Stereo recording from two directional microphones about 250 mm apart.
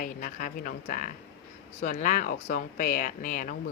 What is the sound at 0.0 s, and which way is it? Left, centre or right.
Speech, left.